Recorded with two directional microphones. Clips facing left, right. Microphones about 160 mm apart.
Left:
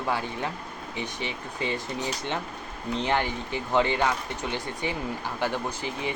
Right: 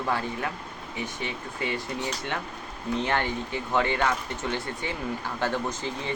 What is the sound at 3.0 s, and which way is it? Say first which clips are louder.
Speech: left 1 dB; 15° left (ahead or behind).